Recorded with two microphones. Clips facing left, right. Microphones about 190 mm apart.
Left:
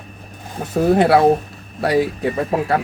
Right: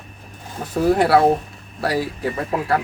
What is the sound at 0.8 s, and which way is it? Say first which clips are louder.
Speech: left 2 dB; 25° left (ahead or behind).